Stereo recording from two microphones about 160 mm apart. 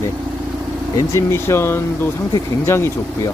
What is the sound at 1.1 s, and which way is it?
Speech, 15° left (ahead or behind).